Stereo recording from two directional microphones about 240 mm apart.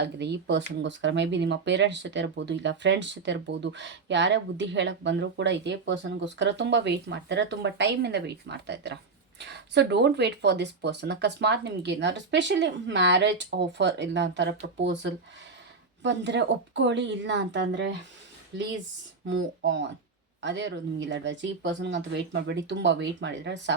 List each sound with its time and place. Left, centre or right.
0.0 s speech: right
16.0 s speech: right